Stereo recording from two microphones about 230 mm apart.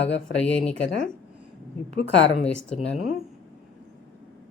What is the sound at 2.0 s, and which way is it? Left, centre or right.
Speech, left.